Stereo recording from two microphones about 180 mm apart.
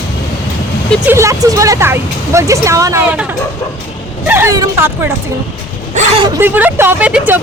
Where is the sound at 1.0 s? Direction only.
15° right (ahead or behind).